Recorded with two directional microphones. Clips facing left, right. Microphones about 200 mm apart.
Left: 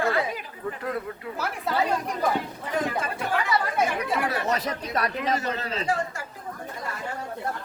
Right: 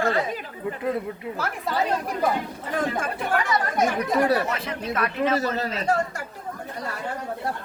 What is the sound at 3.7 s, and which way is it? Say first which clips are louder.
Speech: right 4 dB; 40° right (ahead or behind).